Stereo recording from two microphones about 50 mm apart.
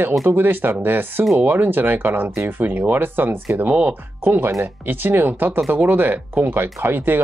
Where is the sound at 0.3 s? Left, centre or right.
Right.